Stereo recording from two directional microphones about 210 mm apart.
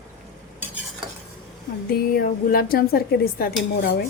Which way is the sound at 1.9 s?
45° left (ahead or behind).